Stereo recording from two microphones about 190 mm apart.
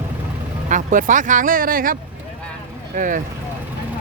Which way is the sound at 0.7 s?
40° right (ahead or behind).